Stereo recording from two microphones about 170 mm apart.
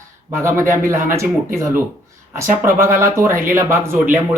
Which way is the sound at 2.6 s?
15° right (ahead or behind).